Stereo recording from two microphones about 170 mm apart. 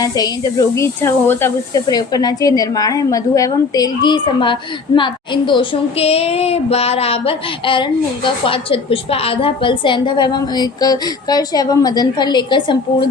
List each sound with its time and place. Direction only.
0.0 s a woman's voice: 20° left (ahead or behind)